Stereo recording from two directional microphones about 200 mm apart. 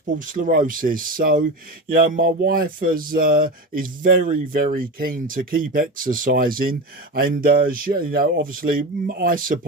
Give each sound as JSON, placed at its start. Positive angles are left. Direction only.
{"t": 0.1, "sound": "speech", "side_deg": -40}